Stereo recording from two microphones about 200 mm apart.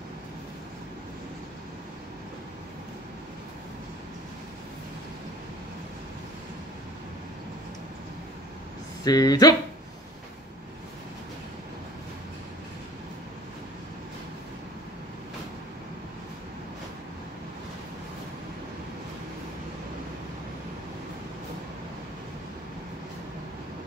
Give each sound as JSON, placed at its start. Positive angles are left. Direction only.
{"t": 9.0, "sound": "speech", "side_deg": 20}